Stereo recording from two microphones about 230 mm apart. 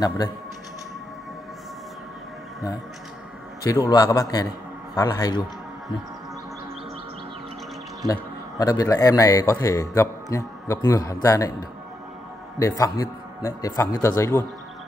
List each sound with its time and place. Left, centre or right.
3.6 s a man's voice: centre
8.1 s a man's voice: centre
12.5 s a man's voice: centre